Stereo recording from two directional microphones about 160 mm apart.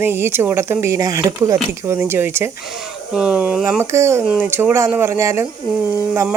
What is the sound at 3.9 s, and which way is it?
Speech, 15° right (ahead or behind).